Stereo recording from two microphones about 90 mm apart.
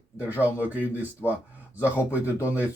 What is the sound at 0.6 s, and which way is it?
Speech, 20° right (ahead or behind).